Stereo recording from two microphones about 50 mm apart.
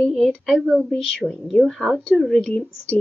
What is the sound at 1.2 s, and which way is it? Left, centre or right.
Speech, right.